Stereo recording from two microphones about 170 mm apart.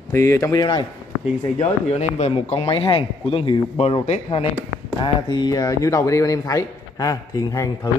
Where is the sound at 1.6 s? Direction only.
40° left (ahead or behind).